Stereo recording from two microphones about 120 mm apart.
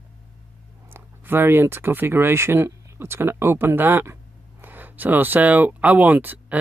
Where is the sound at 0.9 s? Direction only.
20° right (ahead or behind).